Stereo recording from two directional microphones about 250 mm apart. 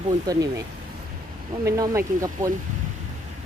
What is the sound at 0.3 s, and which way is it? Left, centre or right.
Speech, centre.